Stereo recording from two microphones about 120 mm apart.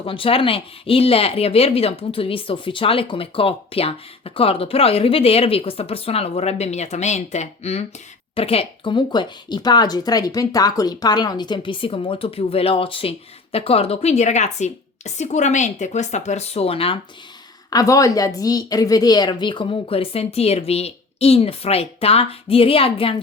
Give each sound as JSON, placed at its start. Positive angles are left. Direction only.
{"t": 0.0, "sound": "speech", "side_deg": 50}
{"t": 17.7, "sound": "speech", "side_deg": 30}